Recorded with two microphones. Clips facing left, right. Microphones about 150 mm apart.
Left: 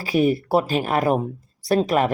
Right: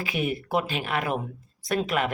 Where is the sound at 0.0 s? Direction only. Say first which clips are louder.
Left 9 dB; 35° left (ahead or behind).